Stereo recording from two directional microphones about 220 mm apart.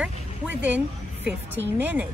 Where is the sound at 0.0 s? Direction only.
5° right (ahead or behind).